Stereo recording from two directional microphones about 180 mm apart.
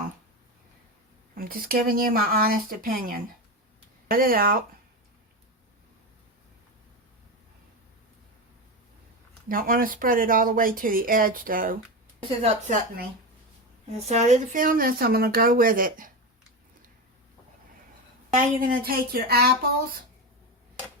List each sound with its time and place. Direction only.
1.4 s speech: 55° right (ahead or behind)
9.5 s speech: 50° right (ahead or behind)
18.3 s a woman's voice: 50° right (ahead or behind)